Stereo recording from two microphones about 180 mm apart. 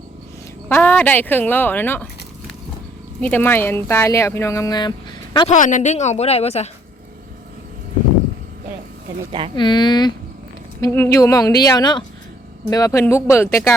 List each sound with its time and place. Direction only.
0.7 s speech: 10° left (ahead or behind)
3.2 s speech: 10° left (ahead or behind); by 5.5 s 25° left (ahead or behind)
5.5 s speech: 45° left (ahead or behind)
9.6 s speech: 25° left (ahead or behind)